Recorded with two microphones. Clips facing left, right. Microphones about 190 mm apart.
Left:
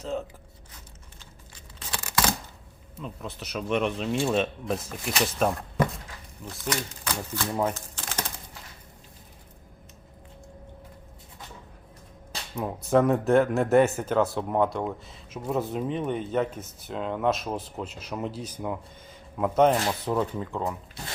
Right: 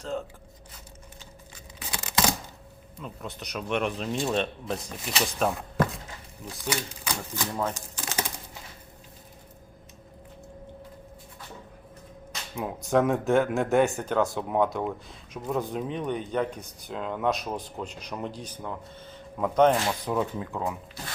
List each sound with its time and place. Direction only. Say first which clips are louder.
0.0 s speech: left 1 dB; centre (ahead or behind)
1.8 s tearing: even; 20° right (ahead or behind)
2.9 s speech: left 1 dB; centre (ahead or behind)
6.7 s speech: left 1 dB; 10° right (ahead or behind)
7.7 s typewriter: even; 15° right (ahead or behind)
12.5 s speech: left 2 dB; centre (ahead or behind)